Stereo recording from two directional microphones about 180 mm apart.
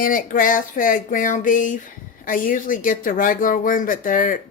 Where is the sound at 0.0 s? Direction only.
50° left (ahead or behind).